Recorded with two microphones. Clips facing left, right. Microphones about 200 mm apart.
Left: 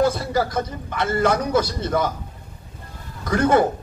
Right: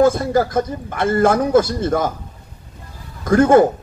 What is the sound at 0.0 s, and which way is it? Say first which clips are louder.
A man's voice: right 5 dB; 50° right (ahead or behind).